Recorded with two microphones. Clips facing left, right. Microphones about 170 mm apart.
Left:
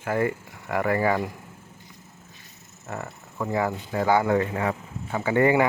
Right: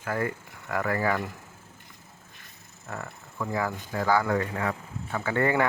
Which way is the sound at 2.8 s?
20° left (ahead or behind).